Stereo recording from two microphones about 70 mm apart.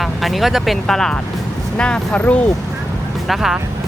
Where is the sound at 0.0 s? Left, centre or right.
Centre.